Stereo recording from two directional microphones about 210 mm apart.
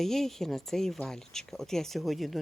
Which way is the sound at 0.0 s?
Centre (ahead or behind).